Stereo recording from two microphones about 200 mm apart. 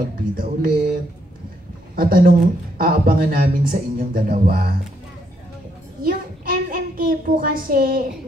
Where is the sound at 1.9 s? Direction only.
45° right (ahead or behind).